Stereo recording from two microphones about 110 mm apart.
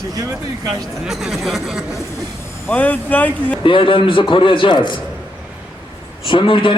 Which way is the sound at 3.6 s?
50° left (ahead or behind).